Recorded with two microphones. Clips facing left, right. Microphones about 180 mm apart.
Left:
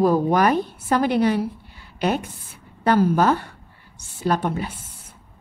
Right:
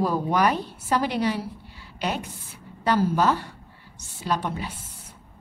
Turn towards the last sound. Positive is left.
turn(degrees=50)  # may be behind; listen again after turning